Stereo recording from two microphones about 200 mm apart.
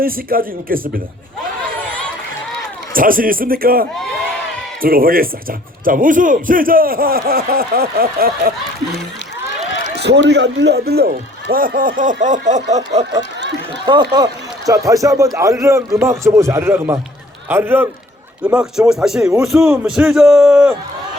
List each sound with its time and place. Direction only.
0.0 s a man's voice: 45° right (ahead or behind)
2.9 s a man's voice: 45° right (ahead or behind)
9.6 s run: 65° left (ahead or behind)
9.9 s a man's voice: 55° right (ahead or behind); by 13.1 s 35° right (ahead or behind)
13.7 s a man's voice: 25° right (ahead or behind); by 20.7 s centre (ahead or behind)